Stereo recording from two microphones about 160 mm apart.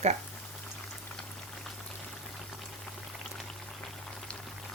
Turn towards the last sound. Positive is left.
turn(degrees=5)  # may be behind; listen again after turning